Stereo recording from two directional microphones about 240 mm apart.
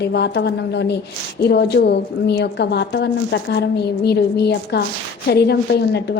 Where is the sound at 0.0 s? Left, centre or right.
Left.